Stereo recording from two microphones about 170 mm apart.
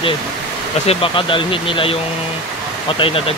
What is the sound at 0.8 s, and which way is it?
Speech, 35° left (ahead or behind).